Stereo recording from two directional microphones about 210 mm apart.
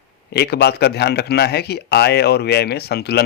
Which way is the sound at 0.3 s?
50° left (ahead or behind).